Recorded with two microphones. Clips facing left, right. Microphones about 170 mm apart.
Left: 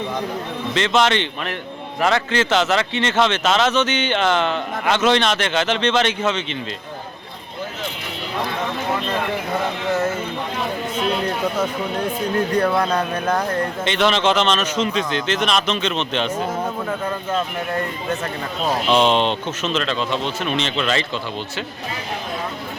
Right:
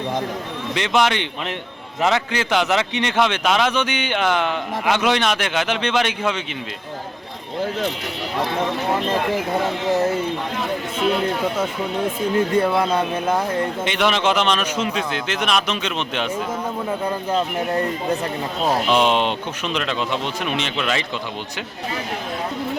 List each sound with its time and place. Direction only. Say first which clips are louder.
0.7 s speech: left 1 dB; 15° right (ahead or behind)
9.9 s speech: right 2 dB; 15° right (ahead or behind)
13.8 s speech: left 3 dB; 10° right (ahead or behind)
18.6 s speech: left 1 dB; 10° right (ahead or behind)